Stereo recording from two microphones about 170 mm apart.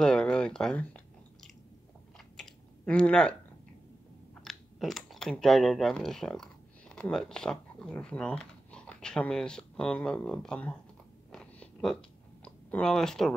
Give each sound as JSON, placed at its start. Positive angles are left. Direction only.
{"t": 0.0, "sound": "chewing", "side_deg": 5}
{"t": 4.5, "sound": "speech", "side_deg": 0}
{"t": 11.3, "sound": "a sound", "side_deg": 5}
{"t": 12.7, "sound": "speech", "side_deg": 5}